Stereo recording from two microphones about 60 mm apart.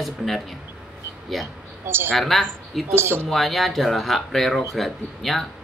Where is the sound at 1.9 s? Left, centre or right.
Right.